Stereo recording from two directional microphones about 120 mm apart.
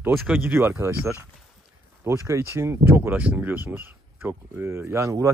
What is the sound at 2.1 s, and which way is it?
Speech, 25° right (ahead or behind).